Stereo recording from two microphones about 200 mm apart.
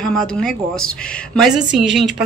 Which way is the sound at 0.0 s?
Centre (ahead or behind).